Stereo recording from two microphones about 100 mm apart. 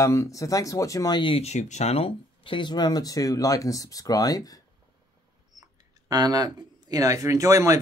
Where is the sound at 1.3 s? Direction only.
90° left; by 4.6 s 40° left (ahead or behind).